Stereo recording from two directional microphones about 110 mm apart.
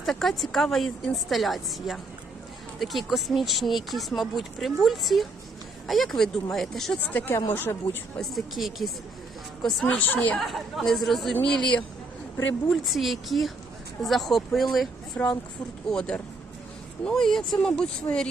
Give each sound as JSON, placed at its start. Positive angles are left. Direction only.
{"t": 0.0, "sound": "speech", "side_deg": 5}
{"t": 7.0, "sound": "speech", "side_deg": 15}
{"t": 8.2, "sound": "speech", "side_deg": 0}
{"t": 10.1, "sound": "speech", "side_deg": 15}
{"t": 10.3, "sound": "speech", "side_deg": 0}
{"t": 15.2, "sound": "speech", "side_deg": 15}